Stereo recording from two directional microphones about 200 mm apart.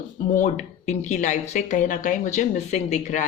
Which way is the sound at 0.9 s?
35° left (ahead or behind).